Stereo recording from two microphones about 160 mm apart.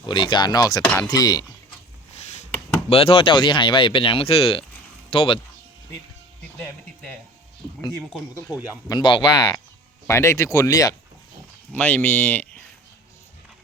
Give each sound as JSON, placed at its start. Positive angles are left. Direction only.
{"t": 0.0, "sound": "speech", "side_deg": 30}
{"t": 2.9, "sound": "speech", "side_deg": 35}
{"t": 8.5, "sound": "speech", "side_deg": 20}
{"t": 10.1, "sound": "speech", "side_deg": 15}
{"t": 11.7, "sound": "speech", "side_deg": 10}